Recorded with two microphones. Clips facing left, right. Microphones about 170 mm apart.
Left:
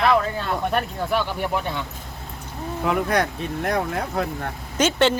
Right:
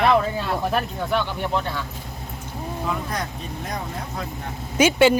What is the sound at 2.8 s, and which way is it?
Speech, 70° left (ahead or behind).